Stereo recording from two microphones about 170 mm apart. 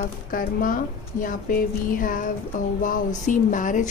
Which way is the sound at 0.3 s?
55° left (ahead or behind).